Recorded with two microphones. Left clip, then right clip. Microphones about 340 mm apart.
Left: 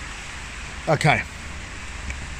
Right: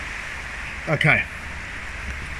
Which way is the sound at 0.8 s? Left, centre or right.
Centre.